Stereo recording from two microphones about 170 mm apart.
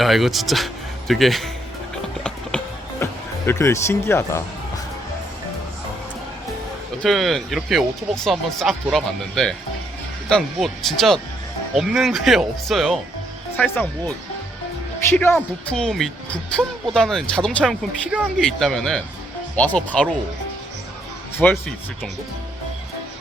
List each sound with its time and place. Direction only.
0.0 s speech: centre (ahead or behind)
3.0 s speech: 15° left (ahead or behind)
7.0 s speech: centre (ahead or behind)
13.6 s speech: 10° left (ahead or behind)
15.1 s speech: 10° left (ahead or behind)
21.3 s speech: 15° left (ahead or behind)